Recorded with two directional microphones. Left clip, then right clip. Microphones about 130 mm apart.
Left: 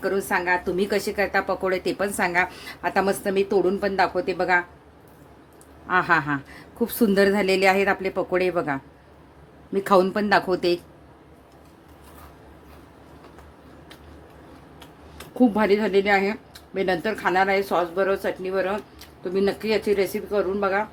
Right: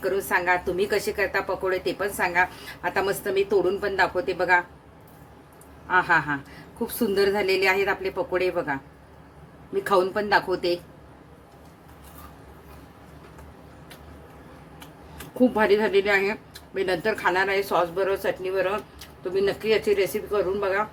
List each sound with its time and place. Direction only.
0.0 s a woman's voice: 40° left (ahead or behind)
5.9 s speech: 55° left (ahead or behind)
15.4 s a woman's voice: 35° left (ahead or behind)